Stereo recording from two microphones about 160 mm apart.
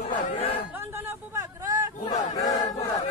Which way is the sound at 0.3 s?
40° left (ahead or behind).